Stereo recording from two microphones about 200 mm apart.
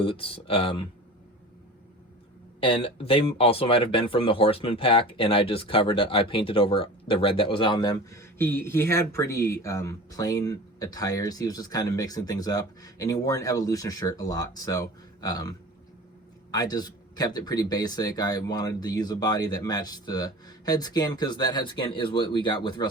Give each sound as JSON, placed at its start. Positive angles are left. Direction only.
{"t": 0.0, "sound": "speech", "side_deg": 25}
{"t": 2.6, "sound": "speech", "side_deg": 25}